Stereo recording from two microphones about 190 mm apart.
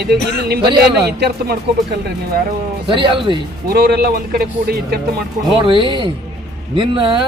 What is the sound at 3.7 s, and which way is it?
Speech, 55° right (ahead or behind).